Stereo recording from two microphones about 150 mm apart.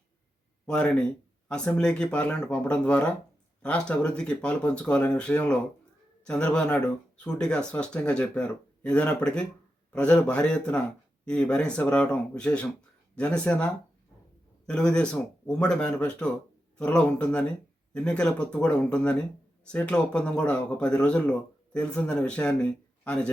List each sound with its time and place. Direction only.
0.7 s speech: 5° left (ahead or behind)